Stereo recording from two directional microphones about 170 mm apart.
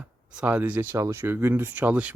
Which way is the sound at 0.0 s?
5° right (ahead or behind).